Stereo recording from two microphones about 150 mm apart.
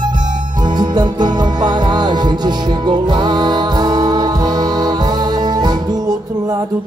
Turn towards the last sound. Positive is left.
turn(degrees=-25)  # may be behind; listen again after turning